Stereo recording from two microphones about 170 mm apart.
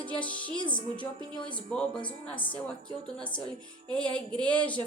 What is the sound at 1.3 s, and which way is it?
Speech, 5° left (ahead or behind).